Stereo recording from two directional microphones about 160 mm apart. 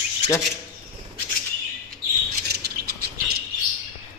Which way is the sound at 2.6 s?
70° right (ahead or behind).